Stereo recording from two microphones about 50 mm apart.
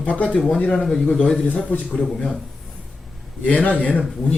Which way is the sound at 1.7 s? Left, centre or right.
Left.